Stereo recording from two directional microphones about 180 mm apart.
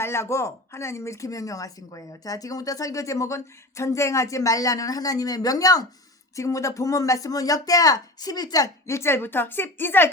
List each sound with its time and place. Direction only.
0.0 s speech: 15° left (ahead or behind)